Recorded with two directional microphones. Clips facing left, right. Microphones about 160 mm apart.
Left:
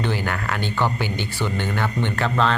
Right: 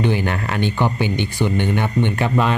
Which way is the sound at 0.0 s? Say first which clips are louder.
Right 5 dB; 20° right (ahead or behind).